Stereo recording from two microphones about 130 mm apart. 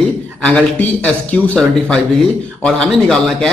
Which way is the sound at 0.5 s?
10° left (ahead or behind).